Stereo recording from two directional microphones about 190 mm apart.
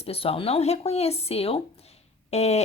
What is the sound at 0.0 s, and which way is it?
A woman's voice, 30° left (ahead or behind).